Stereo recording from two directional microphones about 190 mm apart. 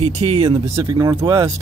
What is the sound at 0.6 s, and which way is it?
Speech, 20° right (ahead or behind).